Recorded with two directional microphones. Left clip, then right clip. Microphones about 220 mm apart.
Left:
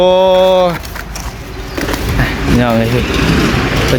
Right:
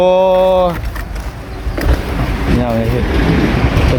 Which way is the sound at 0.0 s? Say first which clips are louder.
Left 2 dB; 10° left (ahead or behind).